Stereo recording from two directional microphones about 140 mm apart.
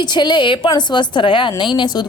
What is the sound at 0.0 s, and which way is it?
A woman's voice, 30° left (ahead or behind).